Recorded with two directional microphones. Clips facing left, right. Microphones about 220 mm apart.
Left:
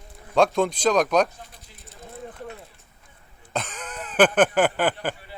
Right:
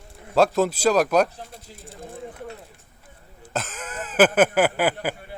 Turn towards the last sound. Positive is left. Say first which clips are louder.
# right 1 dB
turn(degrees=-5)  # may be behind; listen again after turning